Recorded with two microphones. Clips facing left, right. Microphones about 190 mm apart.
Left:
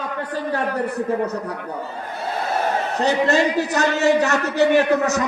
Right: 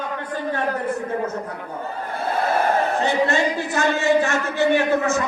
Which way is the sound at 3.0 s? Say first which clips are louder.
Left 2 dB; 40° left (ahead or behind).